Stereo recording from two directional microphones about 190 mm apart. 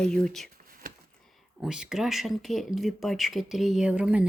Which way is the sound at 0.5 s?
45° right (ahead or behind).